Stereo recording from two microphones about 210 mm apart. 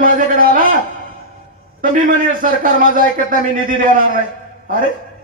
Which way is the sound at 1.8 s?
40° right (ahead or behind).